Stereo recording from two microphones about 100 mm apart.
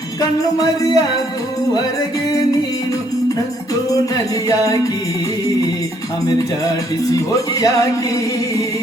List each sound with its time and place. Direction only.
0.2 s music: 40° left (ahead or behind)
3.9 s music: 35° left (ahead or behind)
7.1 s music: 35° left (ahead or behind)